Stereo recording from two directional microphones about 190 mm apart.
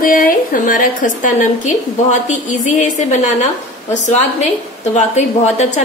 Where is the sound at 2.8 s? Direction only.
40° left (ahead or behind).